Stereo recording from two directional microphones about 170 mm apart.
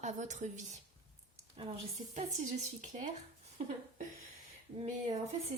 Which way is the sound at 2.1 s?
45° right (ahead or behind).